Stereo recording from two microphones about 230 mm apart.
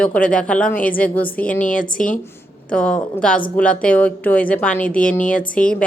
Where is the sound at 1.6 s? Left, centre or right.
Left.